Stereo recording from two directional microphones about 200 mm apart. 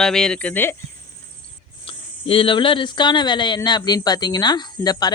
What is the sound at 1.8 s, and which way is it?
Speech, 25° left (ahead or behind).